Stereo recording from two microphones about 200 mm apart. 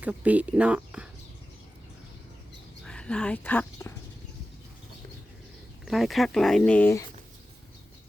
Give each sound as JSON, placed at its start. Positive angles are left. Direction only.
{"t": 0.0, "sound": "speech", "side_deg": -5}
{"t": 2.8, "sound": "speech", "side_deg": 5}
{"t": 5.8, "sound": "speech", "side_deg": 0}